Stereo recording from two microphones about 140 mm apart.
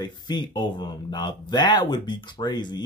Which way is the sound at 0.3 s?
30° left (ahead or behind).